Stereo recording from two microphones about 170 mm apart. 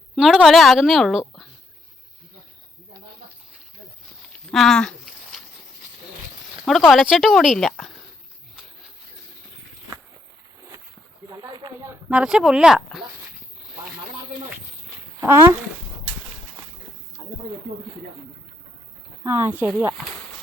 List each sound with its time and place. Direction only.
0.2 s speech: 5° right (ahead or behind)
4.5 s a sound: 5° left (ahead or behind)
6.7 s speech: centre (ahead or behind)
11.4 s a sound: 25° right (ahead or behind)
11.9 s speech: 5° right (ahead or behind)
15.2 s speech: 15° right (ahead or behind)
19.2 s speech: 10° right (ahead or behind)